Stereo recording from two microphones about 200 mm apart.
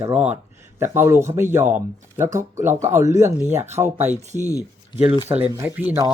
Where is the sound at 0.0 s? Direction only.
5° right (ahead or behind).